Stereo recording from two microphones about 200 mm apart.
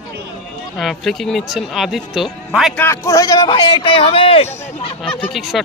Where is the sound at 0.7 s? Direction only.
Centre (ahead or behind).